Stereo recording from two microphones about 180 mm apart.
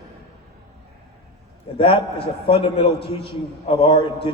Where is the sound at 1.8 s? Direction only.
30° left (ahead or behind).